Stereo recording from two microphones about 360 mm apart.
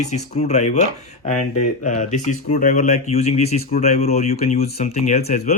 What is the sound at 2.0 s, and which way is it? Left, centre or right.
Speech, centre.